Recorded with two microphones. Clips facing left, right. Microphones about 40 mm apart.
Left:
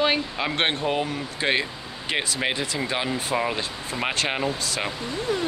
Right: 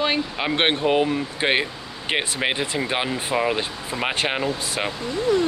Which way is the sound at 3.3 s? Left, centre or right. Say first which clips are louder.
Right 5 dB; centre.